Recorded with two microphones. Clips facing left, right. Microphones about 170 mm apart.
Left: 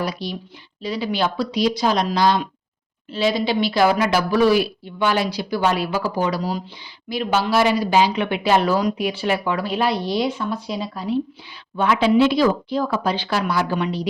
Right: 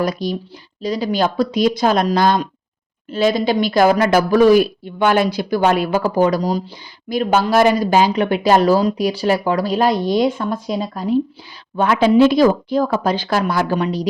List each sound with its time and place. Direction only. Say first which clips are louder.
0.0 s speech: right 6 dB; 45° right (ahead or behind)